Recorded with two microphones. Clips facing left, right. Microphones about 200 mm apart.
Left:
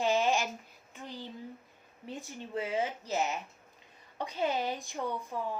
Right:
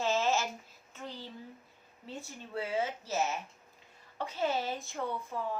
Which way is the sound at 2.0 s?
15° left (ahead or behind).